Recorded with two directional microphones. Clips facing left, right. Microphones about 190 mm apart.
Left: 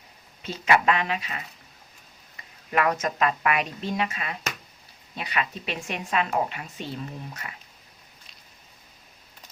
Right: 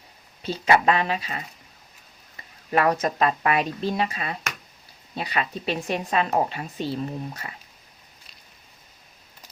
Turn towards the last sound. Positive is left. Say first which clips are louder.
# right 5 dB
turn(degrees=-30)  # may be behind; listen again after turning